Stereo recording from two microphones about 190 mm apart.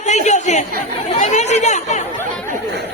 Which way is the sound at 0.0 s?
35° left (ahead or behind).